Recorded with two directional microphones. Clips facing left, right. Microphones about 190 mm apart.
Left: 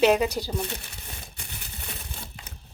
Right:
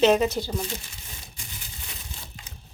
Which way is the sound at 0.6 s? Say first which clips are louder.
Even; 60° left (ahead or behind).